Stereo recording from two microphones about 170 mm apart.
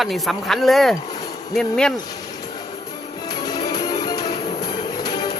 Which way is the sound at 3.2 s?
25° left (ahead or behind).